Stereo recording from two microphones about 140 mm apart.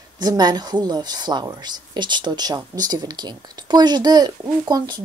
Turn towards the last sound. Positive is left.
turn(degrees=-30)  # may be behind; listen again after turning